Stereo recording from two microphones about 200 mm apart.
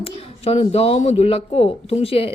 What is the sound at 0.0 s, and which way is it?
Speech, 30° left (ahead or behind).